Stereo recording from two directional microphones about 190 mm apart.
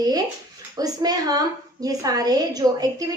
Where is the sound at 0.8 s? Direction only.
20° right (ahead or behind).